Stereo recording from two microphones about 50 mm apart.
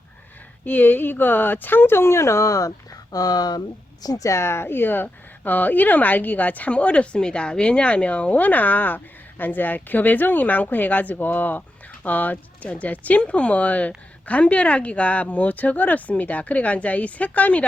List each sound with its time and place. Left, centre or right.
0.6 s speech: left
4.2 s a woman's voice: left